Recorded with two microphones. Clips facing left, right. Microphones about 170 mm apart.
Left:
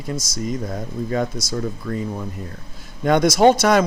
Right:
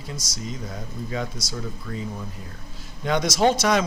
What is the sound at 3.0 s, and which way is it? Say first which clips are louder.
Speech: left 7 dB; 55° left (ahead or behind).